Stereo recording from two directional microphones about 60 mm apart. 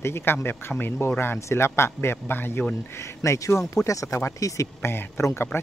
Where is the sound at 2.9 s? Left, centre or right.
Left.